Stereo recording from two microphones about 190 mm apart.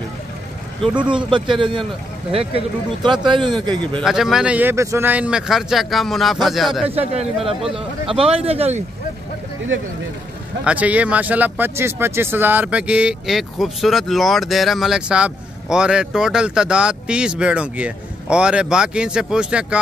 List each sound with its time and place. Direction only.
1.1 s speech: 25° right (ahead or behind)
4.0 s speech: centre (ahead or behind)
6.9 s speech: 30° right (ahead or behind)
10.6 s speech: 5° right (ahead or behind)